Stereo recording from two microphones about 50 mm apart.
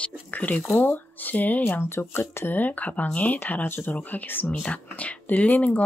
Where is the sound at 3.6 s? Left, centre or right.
Left.